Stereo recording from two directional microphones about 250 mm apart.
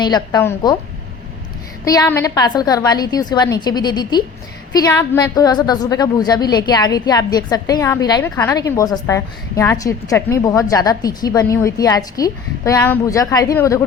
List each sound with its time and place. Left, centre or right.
0.0 s a woman's voice: centre
1.8 s a woman's voice: centre